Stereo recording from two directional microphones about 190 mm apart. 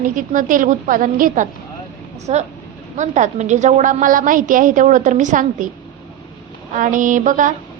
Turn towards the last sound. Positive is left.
turn(degrees=-40)  # may be behind; listen again after turning